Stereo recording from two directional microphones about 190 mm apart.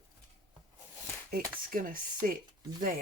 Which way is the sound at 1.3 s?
45° right (ahead or behind).